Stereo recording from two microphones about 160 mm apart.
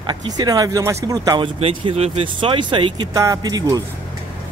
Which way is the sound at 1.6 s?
35° right (ahead or behind).